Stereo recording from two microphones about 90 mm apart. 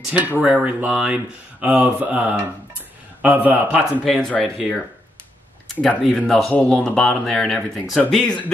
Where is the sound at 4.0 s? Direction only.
5° left (ahead or behind).